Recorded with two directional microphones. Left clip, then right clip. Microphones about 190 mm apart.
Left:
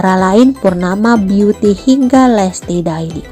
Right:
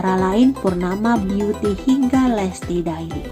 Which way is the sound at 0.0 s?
40° left (ahead or behind).